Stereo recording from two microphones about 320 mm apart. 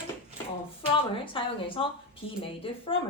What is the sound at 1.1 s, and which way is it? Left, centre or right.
A woman's voice, centre.